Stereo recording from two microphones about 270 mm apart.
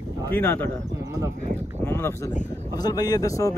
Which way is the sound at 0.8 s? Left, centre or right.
Centre.